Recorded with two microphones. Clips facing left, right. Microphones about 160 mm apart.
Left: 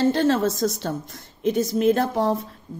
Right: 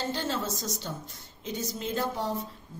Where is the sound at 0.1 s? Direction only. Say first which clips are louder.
Left 11 dB; 65° left (ahead or behind).